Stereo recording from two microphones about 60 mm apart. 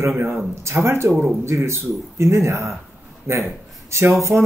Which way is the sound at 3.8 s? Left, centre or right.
Right.